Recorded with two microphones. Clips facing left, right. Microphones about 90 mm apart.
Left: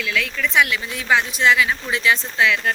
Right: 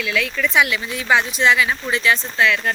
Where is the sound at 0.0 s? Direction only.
5° right (ahead or behind).